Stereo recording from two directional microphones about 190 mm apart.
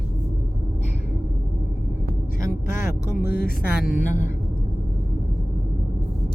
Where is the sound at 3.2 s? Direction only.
50° left (ahead or behind).